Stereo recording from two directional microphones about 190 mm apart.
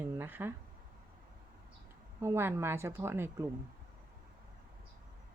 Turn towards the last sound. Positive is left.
turn(degrees=-15)  # may be behind; listen again after turning